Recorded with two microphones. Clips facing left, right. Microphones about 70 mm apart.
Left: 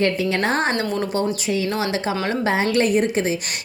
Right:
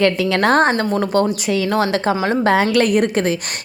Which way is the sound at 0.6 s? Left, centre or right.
Right.